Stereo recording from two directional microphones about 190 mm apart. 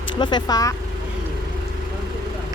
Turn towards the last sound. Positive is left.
turn(degrees=20)  # may be behind; listen again after turning